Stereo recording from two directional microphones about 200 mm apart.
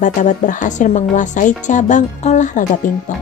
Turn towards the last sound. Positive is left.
turn(degrees=40)  # may be behind; listen again after turning